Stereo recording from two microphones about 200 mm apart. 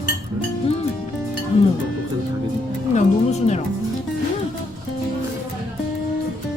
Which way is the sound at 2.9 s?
35° left (ahead or behind).